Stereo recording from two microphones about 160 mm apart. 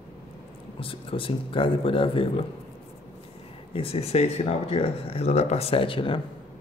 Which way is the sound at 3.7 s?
35° left (ahead or behind).